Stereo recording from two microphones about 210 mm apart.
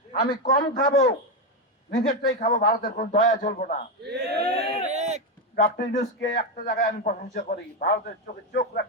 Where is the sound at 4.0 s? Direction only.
50° right (ahead or behind).